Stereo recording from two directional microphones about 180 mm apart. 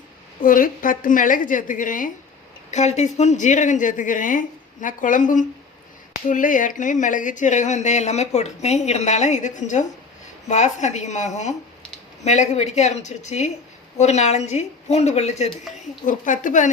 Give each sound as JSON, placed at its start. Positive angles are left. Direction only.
{"t": 0.4, "sound": "speech", "side_deg": 50}